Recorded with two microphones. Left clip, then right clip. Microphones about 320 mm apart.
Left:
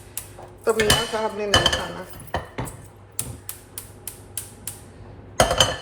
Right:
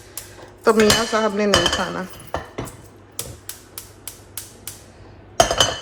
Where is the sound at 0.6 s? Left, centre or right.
Right.